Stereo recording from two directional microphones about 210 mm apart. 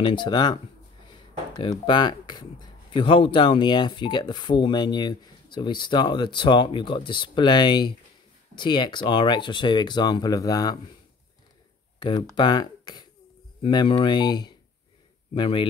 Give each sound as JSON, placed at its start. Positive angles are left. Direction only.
{"t": 0.0, "sound": "speech", "side_deg": 20}
{"t": 1.1, "sound": "a sound", "side_deg": 20}
{"t": 1.7, "sound": "speech", "side_deg": 20}
{"t": 12.0, "sound": "speech", "side_deg": 20}